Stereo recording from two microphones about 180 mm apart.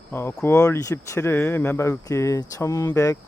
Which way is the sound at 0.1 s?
15° left (ahead or behind).